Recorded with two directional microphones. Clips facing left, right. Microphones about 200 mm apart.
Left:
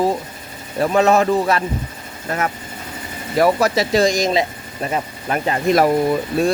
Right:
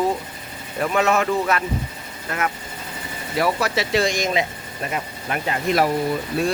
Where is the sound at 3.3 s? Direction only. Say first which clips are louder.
Left 6 dB; 45° left (ahead or behind).